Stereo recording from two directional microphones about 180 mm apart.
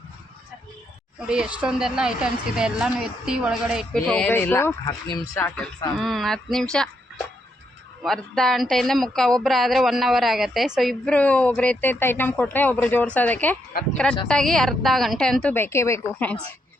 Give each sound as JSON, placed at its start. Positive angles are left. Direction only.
{"t": 1.3, "sound": "speech", "side_deg": -5}
{"t": 8.0, "sound": "speech", "side_deg": 0}